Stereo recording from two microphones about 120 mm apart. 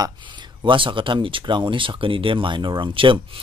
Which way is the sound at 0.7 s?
45° right (ahead or behind).